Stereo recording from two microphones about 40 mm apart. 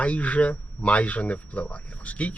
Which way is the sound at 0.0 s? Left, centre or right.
Left.